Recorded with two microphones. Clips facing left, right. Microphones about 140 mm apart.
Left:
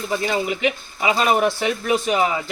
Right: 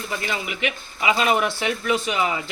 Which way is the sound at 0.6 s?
40° left (ahead or behind).